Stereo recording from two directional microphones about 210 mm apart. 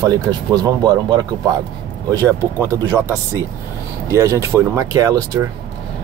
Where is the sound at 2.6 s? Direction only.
15° right (ahead or behind).